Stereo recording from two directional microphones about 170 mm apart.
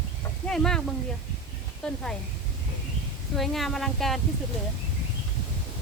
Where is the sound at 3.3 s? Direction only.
Centre (ahead or behind).